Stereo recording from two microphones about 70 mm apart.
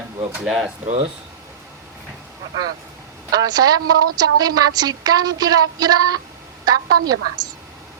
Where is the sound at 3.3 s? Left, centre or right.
Right.